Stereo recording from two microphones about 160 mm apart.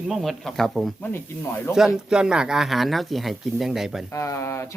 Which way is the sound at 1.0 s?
10° left (ahead or behind).